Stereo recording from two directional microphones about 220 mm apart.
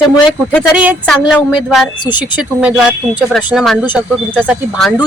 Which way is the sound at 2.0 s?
20° left (ahead or behind).